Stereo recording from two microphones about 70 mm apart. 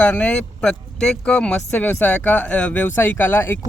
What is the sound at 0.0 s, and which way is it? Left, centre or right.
Speech, centre.